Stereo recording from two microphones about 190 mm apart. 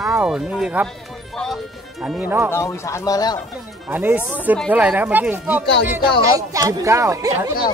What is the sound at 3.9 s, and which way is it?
Speech, 10° right (ahead or behind).